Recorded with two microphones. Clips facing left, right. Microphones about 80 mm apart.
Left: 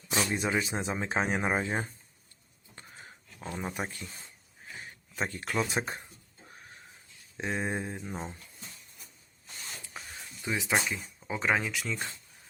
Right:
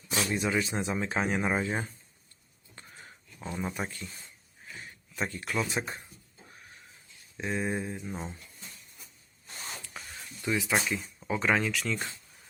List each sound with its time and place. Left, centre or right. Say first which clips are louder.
0.3 s speech: right 1 dB; left
2.7 s a sound: even; left
3.8 s speech: even; centre
4.7 s a sound: left 1 dB; left
5.3 s speech: left 1 dB; left
7.3 s speech: right 1 dB; left
10.4 s speech: right 2 dB; left
10.8 s speech: right 1 dB; centre